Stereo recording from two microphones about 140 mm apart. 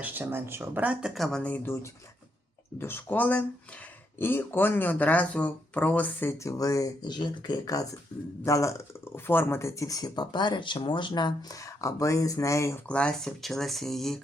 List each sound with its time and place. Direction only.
0.0 s speech: 15° right (ahead or behind); by 12.8 s 20° left (ahead or behind)
12.9 s speech: 5° left (ahead or behind)